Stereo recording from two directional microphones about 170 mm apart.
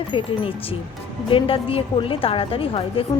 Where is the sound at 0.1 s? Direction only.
30° left (ahead or behind).